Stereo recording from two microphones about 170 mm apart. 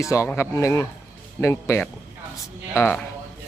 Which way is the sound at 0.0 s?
20° left (ahead or behind).